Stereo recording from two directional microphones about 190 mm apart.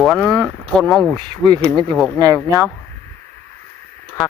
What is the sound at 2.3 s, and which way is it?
Speech, 15° left (ahead or behind).